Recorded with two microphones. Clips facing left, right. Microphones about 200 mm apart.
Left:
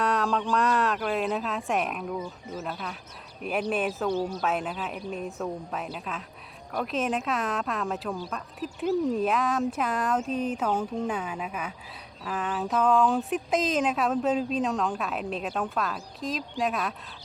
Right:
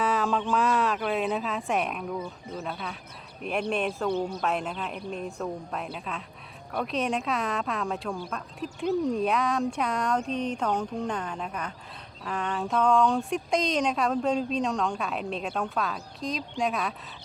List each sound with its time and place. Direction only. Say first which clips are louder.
0.0 s speech: even; centre (ahead or behind)